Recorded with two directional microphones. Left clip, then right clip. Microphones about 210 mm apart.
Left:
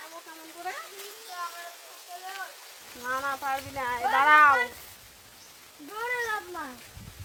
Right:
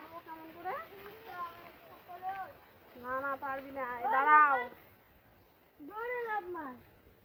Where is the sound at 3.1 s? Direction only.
60° left (ahead or behind).